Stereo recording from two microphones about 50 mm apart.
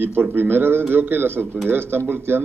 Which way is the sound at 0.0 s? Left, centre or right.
Right.